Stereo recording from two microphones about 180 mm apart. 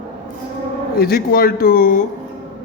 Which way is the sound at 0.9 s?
60° left (ahead or behind).